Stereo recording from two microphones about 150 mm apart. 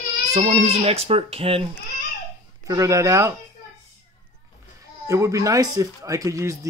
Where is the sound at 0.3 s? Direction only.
45° right (ahead or behind).